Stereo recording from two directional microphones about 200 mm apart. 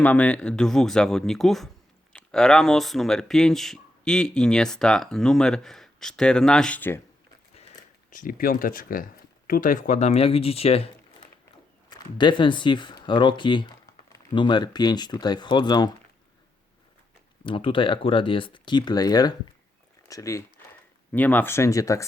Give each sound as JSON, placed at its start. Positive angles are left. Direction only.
{"t": 0.0, "sound": "speech", "side_deg": 5}
{"t": 8.1, "sound": "speech", "side_deg": 45}
{"t": 17.4, "sound": "speech", "side_deg": 25}